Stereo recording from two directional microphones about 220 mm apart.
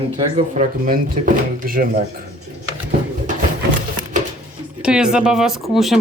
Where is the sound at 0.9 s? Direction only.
40° right (ahead or behind).